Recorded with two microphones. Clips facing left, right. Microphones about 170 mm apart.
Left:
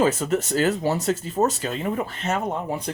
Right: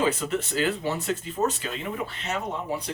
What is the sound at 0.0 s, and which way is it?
Speech, 45° left (ahead or behind).